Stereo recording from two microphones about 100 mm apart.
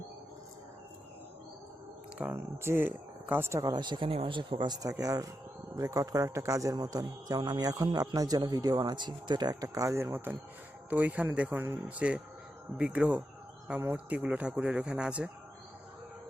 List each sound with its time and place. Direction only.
2.3 s speech: 25° right (ahead or behind)
3.6 s a man's voice: 45° right (ahead or behind)
9.7 s speech: 30° right (ahead or behind); by 15.3 s 10° right (ahead or behind)